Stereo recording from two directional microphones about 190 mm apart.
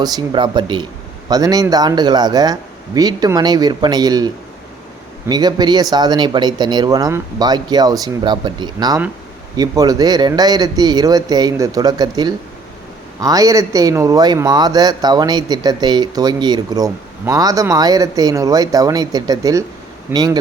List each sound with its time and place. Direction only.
0.0 s speech: 20° right (ahead or behind)